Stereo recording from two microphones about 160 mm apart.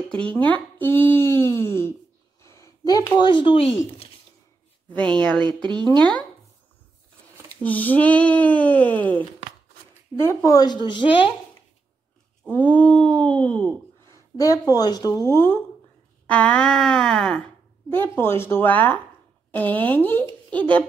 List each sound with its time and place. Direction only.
0.1 s speech: 10° left (ahead or behind); by 4.1 s 35° left (ahead or behind)
4.8 s speech: 10° left (ahead or behind)
7.4 s speech: 10° left (ahead or behind)
10.2 s a woman's voice: 20° left (ahead or behind)
12.4 s speech: 10° left (ahead or behind)
14.1 s a sound: 20° left (ahead or behind)
14.7 s a woman's voice: 25° left (ahead or behind)
15.2 s speech: 15° left (ahead or behind)
16.3 s a sound: 10° left (ahead or behind)
17.9 s speech: 15° left (ahead or behind)